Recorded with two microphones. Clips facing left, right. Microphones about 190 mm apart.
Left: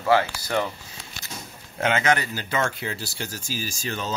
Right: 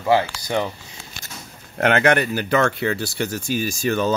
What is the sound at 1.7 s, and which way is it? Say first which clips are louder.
Speech: right 5 dB; 65° right (ahead or behind).